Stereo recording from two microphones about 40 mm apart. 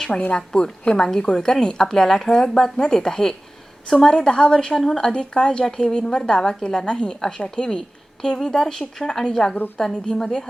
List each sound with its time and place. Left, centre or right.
0.3 s a woman's voice: left